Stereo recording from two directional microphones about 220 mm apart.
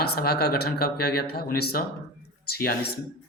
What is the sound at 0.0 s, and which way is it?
Speech, 45° left (ahead or behind).